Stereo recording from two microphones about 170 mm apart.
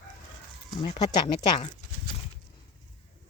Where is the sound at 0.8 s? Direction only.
35° left (ahead or behind).